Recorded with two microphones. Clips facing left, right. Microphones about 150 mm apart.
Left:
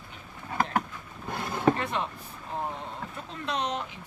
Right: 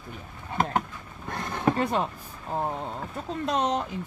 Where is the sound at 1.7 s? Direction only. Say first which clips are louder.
Right 5 dB; 40° right (ahead or behind).